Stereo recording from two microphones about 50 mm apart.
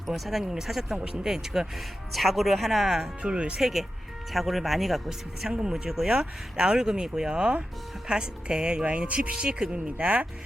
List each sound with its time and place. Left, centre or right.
0.1 s speech: centre
2.1 s speech: centre
3.2 s speech: right
3.6 s speech: centre; by 10.2 s right